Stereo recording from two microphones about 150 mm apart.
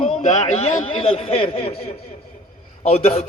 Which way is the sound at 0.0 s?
40° left (ahead or behind).